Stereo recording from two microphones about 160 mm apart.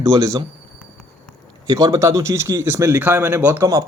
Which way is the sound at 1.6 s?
25° right (ahead or behind).